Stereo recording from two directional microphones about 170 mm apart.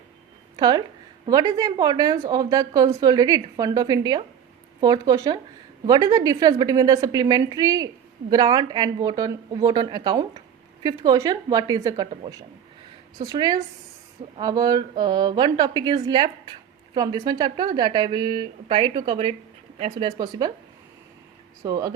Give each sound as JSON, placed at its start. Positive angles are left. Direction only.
{"t": 0.5, "sound": "a woman's voice", "side_deg": -25}
{"t": 21.6, "sound": "a woman's voice", "side_deg": -20}